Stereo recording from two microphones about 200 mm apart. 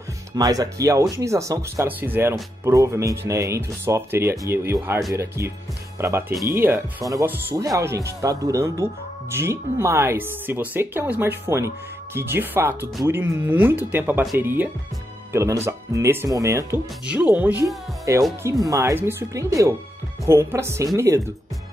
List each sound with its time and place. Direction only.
0.4 s speech: 20° right (ahead or behind)